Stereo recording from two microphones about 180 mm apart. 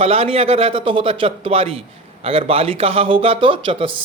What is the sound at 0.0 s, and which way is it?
A man's voice, 30° right (ahead or behind).